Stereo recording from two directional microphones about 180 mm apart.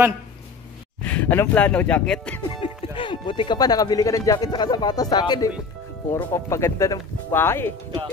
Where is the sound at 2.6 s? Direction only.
30° left (ahead or behind); by 7.7 s 10° left (ahead or behind).